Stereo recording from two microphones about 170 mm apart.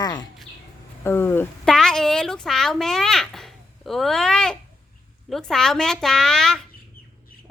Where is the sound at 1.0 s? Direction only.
10° left (ahead or behind).